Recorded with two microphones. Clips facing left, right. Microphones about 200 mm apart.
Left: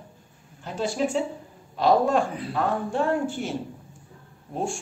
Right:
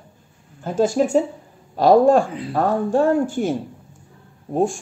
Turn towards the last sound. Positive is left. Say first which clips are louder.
# right 9 dB
turn(degrees=-45)  # may be behind; listen again after turning